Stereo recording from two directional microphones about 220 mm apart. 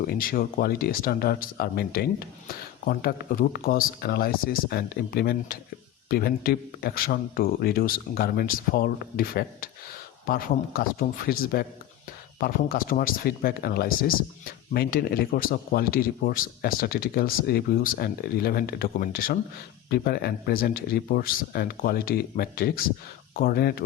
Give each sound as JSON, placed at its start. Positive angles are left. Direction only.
{"t": 0.1, "sound": "speech", "side_deg": 40}